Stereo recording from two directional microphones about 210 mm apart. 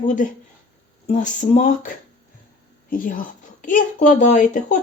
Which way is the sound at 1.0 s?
35° left (ahead or behind).